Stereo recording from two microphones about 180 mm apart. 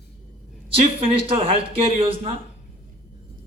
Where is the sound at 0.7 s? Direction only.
30° right (ahead or behind).